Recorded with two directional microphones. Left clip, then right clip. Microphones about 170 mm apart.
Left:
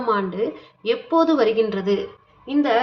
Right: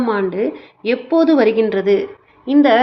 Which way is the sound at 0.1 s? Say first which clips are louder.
Left 1 dB; 20° right (ahead or behind).